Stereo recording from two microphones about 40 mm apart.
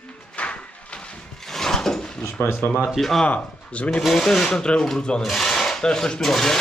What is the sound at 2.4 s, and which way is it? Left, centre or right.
Speech, left.